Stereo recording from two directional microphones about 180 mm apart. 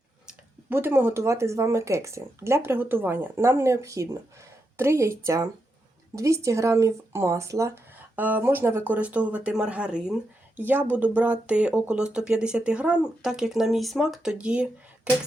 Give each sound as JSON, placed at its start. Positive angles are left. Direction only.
{"t": 0.3, "sound": "speech", "side_deg": -10}